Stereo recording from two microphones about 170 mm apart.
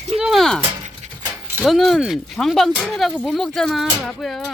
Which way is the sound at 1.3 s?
10° right (ahead or behind).